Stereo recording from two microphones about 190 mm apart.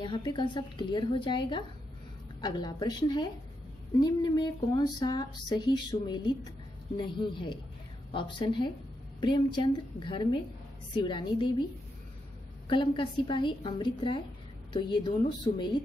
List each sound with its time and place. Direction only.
0.0 s speech: 25° left (ahead or behind)
12.6 s speech: 25° left (ahead or behind)